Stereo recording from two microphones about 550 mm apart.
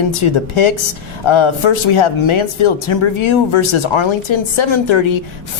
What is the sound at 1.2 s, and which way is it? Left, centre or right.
Speech, left.